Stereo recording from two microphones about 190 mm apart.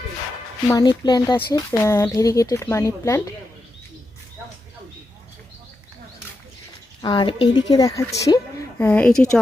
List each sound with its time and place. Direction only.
0.7 s speech: 20° left (ahead or behind)
7.0 s a woman's voice: 25° left (ahead or behind); by 9.4 s 5° left (ahead or behind)